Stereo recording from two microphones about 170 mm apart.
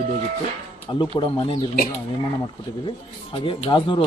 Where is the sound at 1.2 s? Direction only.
30° left (ahead or behind).